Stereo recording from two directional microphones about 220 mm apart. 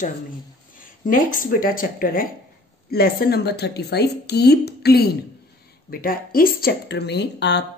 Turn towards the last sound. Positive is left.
turn(degrees=50)  # may be behind; listen again after turning